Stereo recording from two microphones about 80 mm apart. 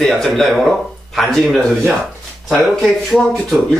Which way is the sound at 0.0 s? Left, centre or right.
Centre.